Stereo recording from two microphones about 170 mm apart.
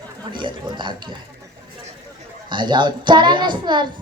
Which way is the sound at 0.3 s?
30° right (ahead or behind).